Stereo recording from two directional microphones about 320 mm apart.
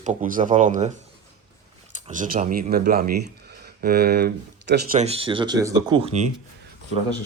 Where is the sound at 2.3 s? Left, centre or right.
Right.